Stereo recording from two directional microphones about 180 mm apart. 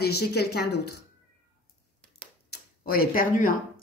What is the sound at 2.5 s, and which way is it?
Speech, 55° left (ahead or behind).